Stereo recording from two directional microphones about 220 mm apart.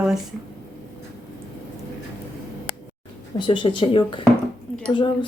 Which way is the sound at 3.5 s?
25° left (ahead or behind).